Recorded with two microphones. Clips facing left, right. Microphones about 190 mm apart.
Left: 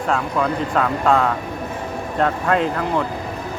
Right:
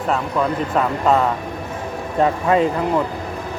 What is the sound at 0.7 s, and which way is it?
Speech, 5° right (ahead or behind).